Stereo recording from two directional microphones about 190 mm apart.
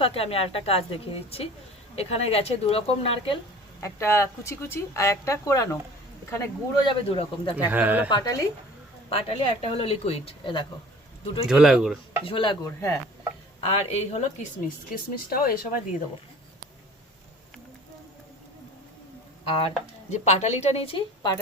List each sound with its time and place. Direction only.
0.0 s speech: 30° left (ahead or behind)
3.8 s speech: 15° left (ahead or behind)
6.8 s stir: 30° left (ahead or behind)
7.5 s speech: 10° right (ahead or behind)
8.1 s stir: 20° left (ahead or behind)
9.0 s speech: 30° left (ahead or behind)
11.4 s speech: 5° right (ahead or behind)
12.2 s stir: 25° left (ahead or behind)
13.6 s speech: 35° left (ahead or behind)
14.9 s speech: 50° left (ahead or behind)
19.5 s speech: 35° left (ahead or behind)